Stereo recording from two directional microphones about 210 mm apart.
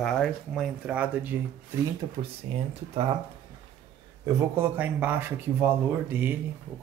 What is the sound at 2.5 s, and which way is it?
Speech, 30° right (ahead or behind).